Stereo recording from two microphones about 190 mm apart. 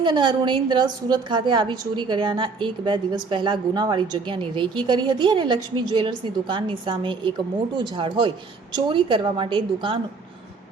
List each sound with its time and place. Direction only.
0.0 s a woman's voice: 25° right (ahead or behind)